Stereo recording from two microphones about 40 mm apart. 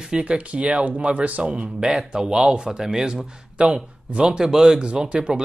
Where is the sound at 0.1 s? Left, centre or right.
Right.